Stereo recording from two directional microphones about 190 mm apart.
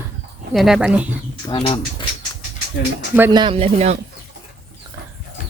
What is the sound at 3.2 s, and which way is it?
Speech, 15° right (ahead or behind).